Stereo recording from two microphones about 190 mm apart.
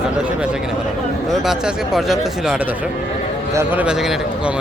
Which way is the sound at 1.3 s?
Centre (ahead or behind).